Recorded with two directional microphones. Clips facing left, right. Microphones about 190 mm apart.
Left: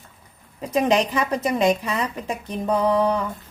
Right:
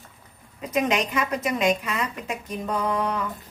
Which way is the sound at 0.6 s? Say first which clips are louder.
Left 4 dB; 30° left (ahead or behind).